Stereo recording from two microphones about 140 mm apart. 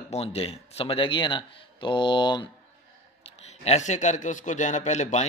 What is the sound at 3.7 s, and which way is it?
Speech, 60° left (ahead or behind).